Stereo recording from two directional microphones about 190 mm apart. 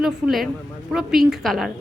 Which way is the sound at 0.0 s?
Centre (ahead or behind).